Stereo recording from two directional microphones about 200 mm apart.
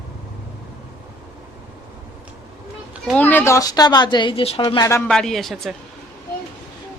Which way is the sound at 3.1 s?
10° left (ahead or behind).